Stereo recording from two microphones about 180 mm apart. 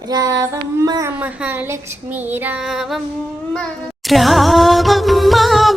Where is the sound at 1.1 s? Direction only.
10° right (ahead or behind).